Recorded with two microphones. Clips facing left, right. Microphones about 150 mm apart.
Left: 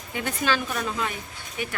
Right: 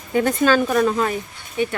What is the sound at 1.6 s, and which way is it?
Speech, 30° right (ahead or behind).